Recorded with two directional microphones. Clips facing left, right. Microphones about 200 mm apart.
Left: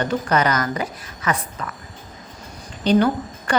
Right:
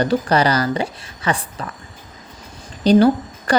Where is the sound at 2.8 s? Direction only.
35° right (ahead or behind).